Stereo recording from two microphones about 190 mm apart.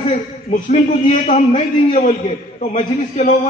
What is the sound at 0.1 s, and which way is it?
A man's voice, 40° left (ahead or behind).